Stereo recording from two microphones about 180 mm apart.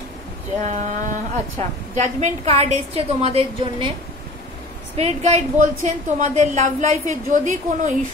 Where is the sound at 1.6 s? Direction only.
40° right (ahead or behind).